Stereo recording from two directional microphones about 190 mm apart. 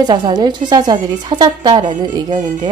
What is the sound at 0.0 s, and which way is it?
Speech, 20° right (ahead or behind).